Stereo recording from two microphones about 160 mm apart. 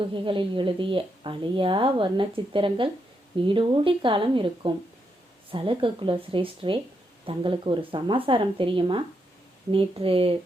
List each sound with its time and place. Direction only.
0.0 s a woman's voice: 30° right (ahead or behind)